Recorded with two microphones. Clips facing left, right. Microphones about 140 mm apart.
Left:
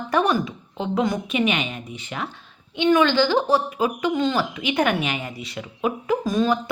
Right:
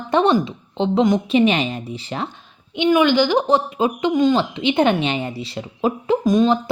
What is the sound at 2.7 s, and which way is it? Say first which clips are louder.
A woman's voice: right 2 dB; 15° right (ahead or behind).